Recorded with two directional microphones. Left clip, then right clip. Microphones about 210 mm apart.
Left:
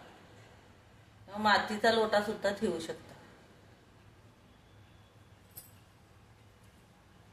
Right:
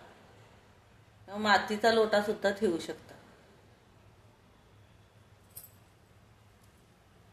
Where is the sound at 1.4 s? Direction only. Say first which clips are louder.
Right 1 dB; 45° right (ahead or behind).